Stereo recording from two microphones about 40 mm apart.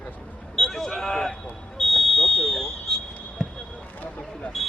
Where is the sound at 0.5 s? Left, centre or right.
Centre.